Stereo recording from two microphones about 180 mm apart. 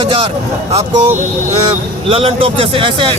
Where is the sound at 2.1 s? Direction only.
30° right (ahead or behind).